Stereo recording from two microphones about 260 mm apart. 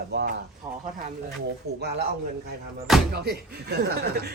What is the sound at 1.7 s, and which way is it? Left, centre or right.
Speech, right.